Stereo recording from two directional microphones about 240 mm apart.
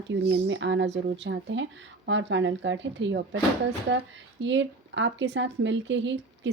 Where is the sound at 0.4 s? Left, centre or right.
Right.